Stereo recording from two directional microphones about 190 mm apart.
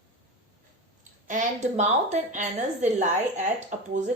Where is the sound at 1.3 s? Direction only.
40° right (ahead or behind).